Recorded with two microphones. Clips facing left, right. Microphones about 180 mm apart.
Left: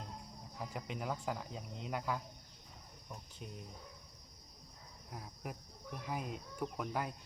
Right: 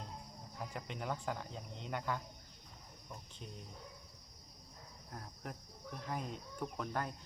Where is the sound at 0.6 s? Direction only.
5° left (ahead or behind).